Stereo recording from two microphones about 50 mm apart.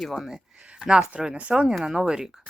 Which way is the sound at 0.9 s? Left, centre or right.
Centre.